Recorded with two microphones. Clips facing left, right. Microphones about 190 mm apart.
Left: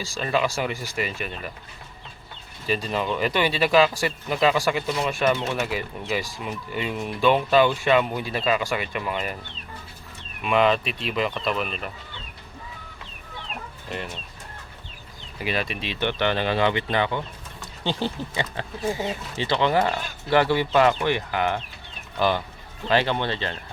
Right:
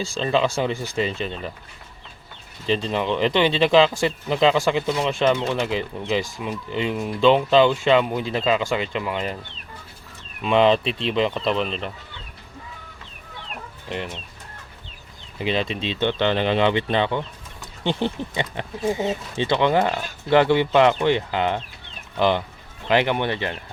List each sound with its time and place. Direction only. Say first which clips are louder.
0.0 s speech: right 3 dB; 25° right (ahead or behind)
2.6 s speech: right 3 dB; 25° right (ahead or behind)
10.4 s speech: right 3 dB; 30° right (ahead or behind)
15.4 s speech: right 4 dB; 25° right (ahead or behind)
22.9 s speech: right 2 dB; 15° right (ahead or behind)